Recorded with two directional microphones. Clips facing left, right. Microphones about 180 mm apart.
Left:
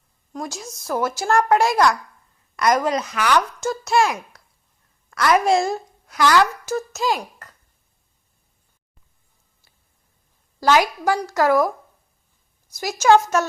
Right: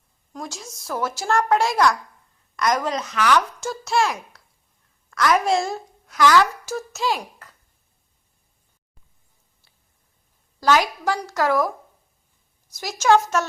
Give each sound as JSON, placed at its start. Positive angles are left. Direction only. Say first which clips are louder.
{"t": 0.3, "sound": "a woman's voice", "louder": "left 4 dB", "side_deg": 0}
{"t": 10.6, "sound": "speech", "louder": "left 2 dB", "side_deg": 5}
{"t": 12.7, "sound": "speech", "louder": "left 2 dB", "side_deg": 5}